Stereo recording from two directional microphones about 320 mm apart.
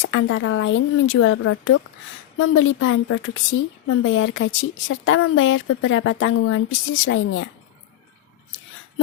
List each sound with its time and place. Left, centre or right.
0.0 s a woman's voice: left